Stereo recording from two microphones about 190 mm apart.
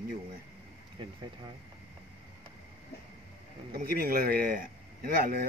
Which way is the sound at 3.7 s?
50° right (ahead or behind).